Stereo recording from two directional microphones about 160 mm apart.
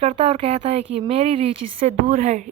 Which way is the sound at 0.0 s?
40° right (ahead or behind).